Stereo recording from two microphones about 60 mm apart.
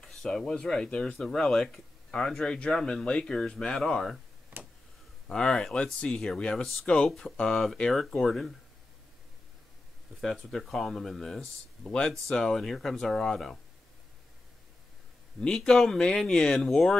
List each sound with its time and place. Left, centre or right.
0.0 s speech: centre
4.5 s a sound: right
5.3 s speech: centre
7.1 s speech: centre
10.6 s speech: centre
11.8 s speech: centre
15.4 s speech: centre